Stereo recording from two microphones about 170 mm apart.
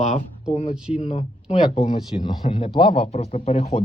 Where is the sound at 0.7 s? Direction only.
5° right (ahead or behind).